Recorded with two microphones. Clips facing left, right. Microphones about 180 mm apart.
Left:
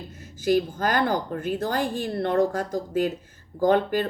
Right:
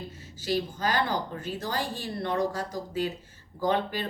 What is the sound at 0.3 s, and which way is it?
A woman's voice, 50° left (ahead or behind).